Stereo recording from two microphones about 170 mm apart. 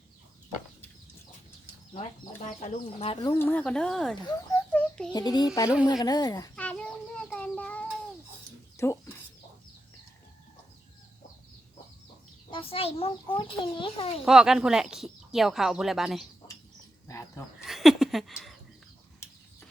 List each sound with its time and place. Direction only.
1.9 s a child's voice: 40° left (ahead or behind)
3.2 s speech: 10° left (ahead or behind)
4.2 s speech: 20° left (ahead or behind)
4.7 s a sound: 5° left (ahead or behind)
5.1 s speech: 25° left (ahead or behind)
6.6 s children playing: 5° left (ahead or behind)
7.3 s child singing: 5° left (ahead or behind)
8.8 s bird: 15° left (ahead or behind)
12.5 s a child's voice: 30° left (ahead or behind)
14.3 s speech: 5° right (ahead or behind)
17.1 s a sound: 15° left (ahead or behind)
17.6 s a sound: centre (ahead or behind)